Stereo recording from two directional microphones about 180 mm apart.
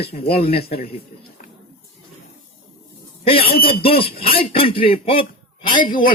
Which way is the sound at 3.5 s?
55° left (ahead or behind).